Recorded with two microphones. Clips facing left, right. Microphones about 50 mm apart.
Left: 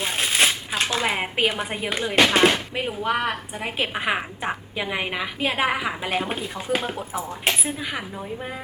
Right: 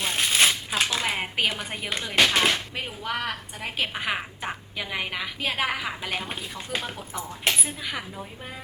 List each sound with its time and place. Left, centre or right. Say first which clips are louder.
0.0 s shuffling cards: left 1 dB; centre
1.0 s a woman's voice: left 4 dB; centre